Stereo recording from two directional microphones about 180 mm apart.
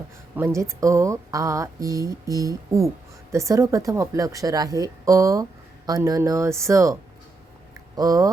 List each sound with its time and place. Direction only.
0.3 s speech: 15° right (ahead or behind)
7.9 s speech: 20° right (ahead or behind)